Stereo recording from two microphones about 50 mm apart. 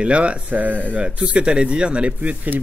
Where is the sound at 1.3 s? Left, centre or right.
Centre.